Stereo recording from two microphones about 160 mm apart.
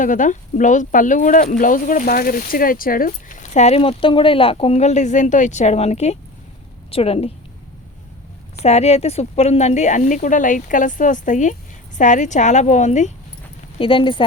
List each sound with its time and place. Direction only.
0.0 s speech: 55° left (ahead or behind); by 7.3 s 35° left (ahead or behind)
8.6 s speech: 40° left (ahead or behind)
13.7 s speech: 35° left (ahead or behind)